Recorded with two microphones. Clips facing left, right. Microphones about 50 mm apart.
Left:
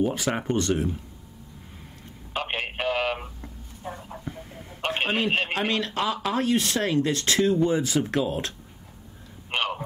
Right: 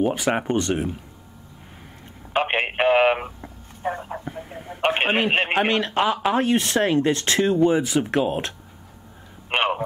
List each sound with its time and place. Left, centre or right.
0.0 s speech: right
2.3 s telephone: right
3.8 s speech: right
9.5 s a sound: right